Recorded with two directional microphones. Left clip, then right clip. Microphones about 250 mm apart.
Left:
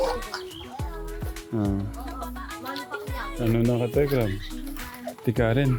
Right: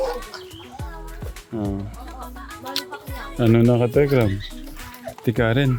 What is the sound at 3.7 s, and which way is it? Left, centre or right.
Speech, right.